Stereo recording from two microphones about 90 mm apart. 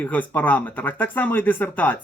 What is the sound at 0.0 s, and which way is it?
Speech, 20° left (ahead or behind).